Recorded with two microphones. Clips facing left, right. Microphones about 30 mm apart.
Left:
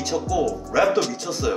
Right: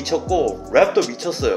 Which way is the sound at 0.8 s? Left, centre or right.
Centre.